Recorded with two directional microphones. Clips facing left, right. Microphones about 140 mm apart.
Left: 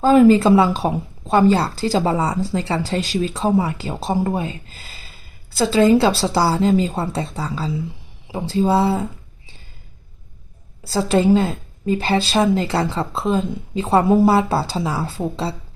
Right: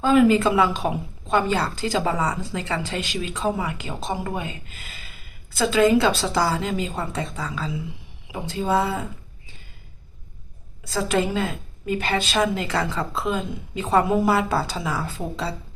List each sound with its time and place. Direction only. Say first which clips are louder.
0.0 s speech: left 5 dB; 35° left (ahead or behind)
10.8 s speech: left 7 dB; 35° left (ahead or behind)